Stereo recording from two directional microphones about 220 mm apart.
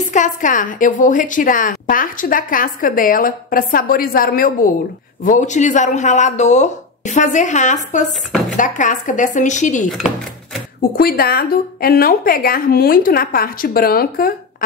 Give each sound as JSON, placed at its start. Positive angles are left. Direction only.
{"t": 0.1, "sound": "a woman's voice", "side_deg": 35}
{"t": 9.8, "sound": "a sound", "side_deg": 0}
{"t": 10.8, "sound": "speech", "side_deg": 45}